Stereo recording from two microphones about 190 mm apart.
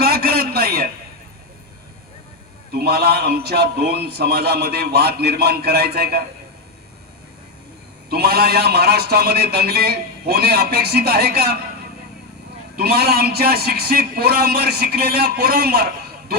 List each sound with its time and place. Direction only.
0.0 s a sound: 55° right (ahead or behind)
2.7 s a man's voice: 55° right (ahead or behind)
8.1 s a man's voice: 55° right (ahead or behind)
12.7 s a man's voice: 55° right (ahead or behind)